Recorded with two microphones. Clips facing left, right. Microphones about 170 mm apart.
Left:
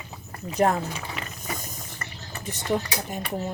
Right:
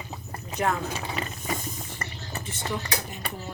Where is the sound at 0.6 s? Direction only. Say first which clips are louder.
Left 5 dB; 40° left (ahead or behind).